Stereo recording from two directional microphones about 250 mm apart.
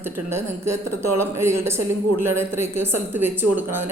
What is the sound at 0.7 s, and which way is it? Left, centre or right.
Speech, right.